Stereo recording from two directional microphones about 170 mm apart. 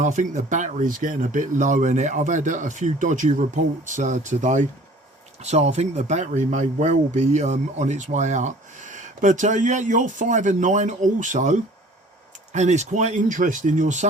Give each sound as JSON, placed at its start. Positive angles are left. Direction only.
{"t": 0.0, "sound": "speech", "side_deg": -45}